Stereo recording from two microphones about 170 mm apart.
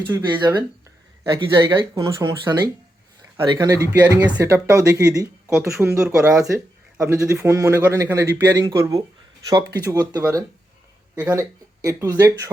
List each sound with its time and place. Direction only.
0.3 s speech: 25° right (ahead or behind)
6.0 s speech: 5° right (ahead or behind)